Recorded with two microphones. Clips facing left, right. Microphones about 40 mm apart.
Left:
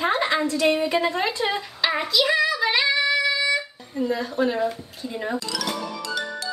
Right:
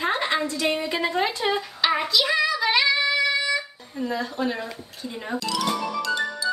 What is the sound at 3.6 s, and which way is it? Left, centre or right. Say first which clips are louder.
Speech: left 3 dB; centre.